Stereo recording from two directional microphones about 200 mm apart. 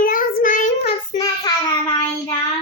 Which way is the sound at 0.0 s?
45° left (ahead or behind).